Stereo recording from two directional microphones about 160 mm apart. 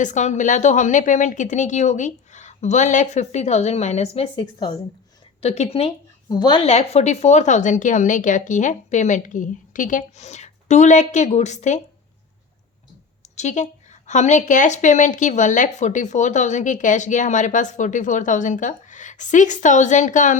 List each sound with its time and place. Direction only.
0.0 s a woman's voice: 50° left (ahead or behind)
13.3 s a woman's voice: 45° left (ahead or behind)